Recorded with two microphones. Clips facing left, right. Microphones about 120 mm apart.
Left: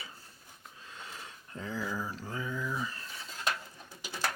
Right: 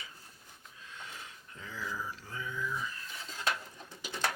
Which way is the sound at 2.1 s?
35° left (ahead or behind).